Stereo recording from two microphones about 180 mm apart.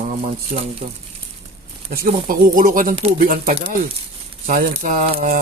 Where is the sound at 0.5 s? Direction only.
45° right (ahead or behind).